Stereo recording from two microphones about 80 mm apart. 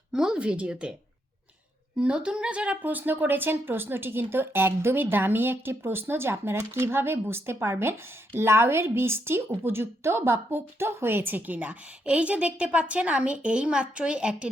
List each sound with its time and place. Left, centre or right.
0.1 s a woman's voice: centre
2.0 s a woman's voice: centre